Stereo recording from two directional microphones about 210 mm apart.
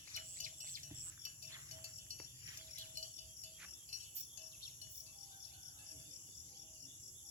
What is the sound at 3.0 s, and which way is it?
Music, 40° right (ahead or behind).